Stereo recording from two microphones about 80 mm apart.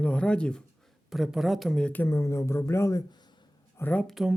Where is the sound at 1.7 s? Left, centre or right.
Centre.